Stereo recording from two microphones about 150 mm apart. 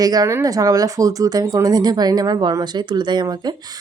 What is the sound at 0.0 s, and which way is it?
A woman's voice, 25° right (ahead or behind).